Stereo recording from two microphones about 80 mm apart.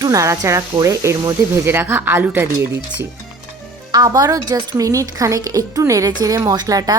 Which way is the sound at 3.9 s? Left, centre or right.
Right.